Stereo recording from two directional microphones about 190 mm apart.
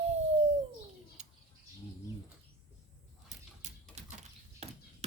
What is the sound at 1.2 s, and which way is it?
Bird, 35° right (ahead or behind).